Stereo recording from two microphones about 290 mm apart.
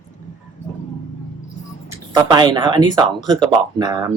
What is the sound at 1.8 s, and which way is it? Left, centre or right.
Speech, centre.